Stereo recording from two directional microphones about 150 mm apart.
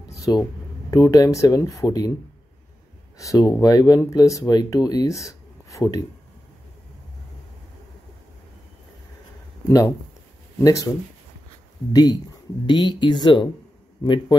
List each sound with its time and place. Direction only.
0.1 s speech: 25° left (ahead or behind)
3.2 s speech: 20° left (ahead or behind)
10.6 s speech: 20° left (ahead or behind)
11.9 s speech: 25° left (ahead or behind)